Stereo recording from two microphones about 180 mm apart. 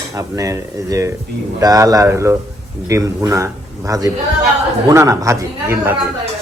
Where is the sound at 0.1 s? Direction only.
20° right (ahead or behind).